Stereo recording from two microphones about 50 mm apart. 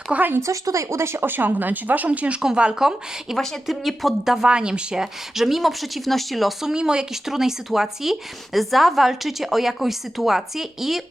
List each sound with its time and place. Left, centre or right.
0.1 s speech: right
0.4 s speech: right
2.4 s speech: centre
3.3 s speech: centre
4.4 s speech: centre
5.3 s speech: centre